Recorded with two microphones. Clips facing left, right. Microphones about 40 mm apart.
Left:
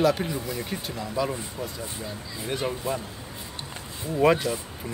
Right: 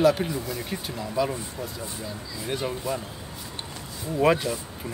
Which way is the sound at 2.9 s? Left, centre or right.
Left.